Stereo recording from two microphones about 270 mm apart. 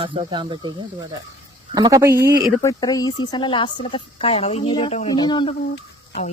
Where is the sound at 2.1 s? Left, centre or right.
Right.